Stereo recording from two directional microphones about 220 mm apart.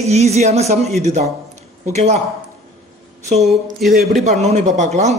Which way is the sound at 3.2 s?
30° right (ahead or behind).